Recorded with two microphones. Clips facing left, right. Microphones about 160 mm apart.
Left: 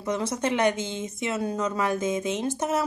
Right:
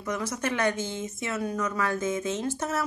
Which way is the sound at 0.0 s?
25° left (ahead or behind).